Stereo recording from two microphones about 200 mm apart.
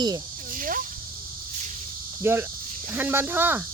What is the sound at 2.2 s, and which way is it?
Cricket, 10° right (ahead or behind).